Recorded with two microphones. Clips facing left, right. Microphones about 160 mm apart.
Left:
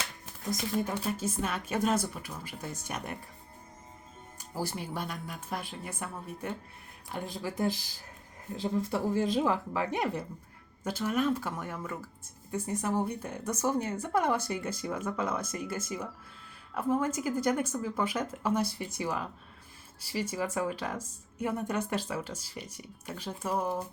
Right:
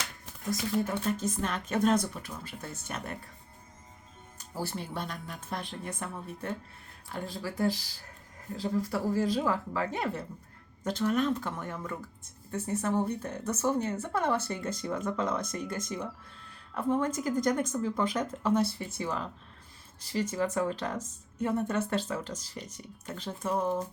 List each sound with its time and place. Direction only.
0.8 s speech: 10° left (ahead or behind)
4.4 s speech: 10° left (ahead or behind)